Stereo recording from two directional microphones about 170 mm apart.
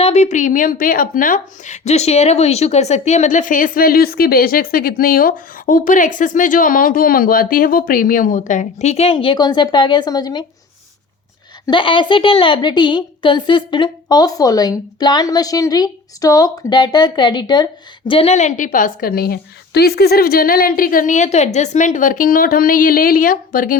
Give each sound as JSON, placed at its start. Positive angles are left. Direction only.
{"t": 0.0, "sound": "a woman's voice", "side_deg": 40}
{"t": 11.6, "sound": "a woman's voice", "side_deg": 30}
{"t": 18.1, "sound": "a woman's voice", "side_deg": 35}